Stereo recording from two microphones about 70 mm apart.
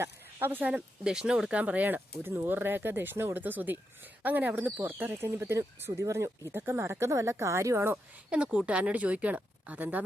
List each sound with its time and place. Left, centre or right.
0.0 s speech: right
0.7 s speech: centre; by 6.5 s right
6.5 s speech: right
8.3 s speech: centre